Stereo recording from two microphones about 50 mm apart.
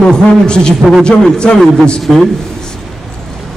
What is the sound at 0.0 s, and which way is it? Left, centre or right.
Speech, centre.